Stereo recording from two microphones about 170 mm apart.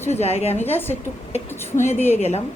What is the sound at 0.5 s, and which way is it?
Speech, 10° left (ahead or behind).